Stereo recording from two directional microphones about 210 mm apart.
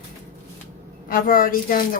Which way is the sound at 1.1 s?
40° left (ahead or behind).